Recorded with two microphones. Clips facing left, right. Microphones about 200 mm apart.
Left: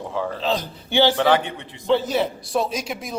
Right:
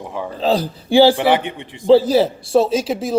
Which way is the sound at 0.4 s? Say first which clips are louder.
Right 6 dB; 35° right (ahead or behind).